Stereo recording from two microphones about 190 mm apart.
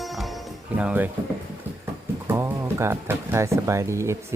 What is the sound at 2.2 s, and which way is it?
Speech, 15° right (ahead or behind).